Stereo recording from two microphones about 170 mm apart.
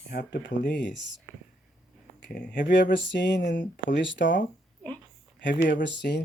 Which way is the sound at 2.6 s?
90° left.